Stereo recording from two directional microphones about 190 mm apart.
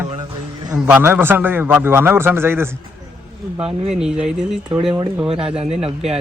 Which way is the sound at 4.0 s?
5° right (ahead or behind).